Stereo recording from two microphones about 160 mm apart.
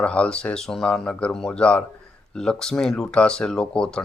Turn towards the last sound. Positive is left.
turn(degrees=5)  # may be behind; listen again after turning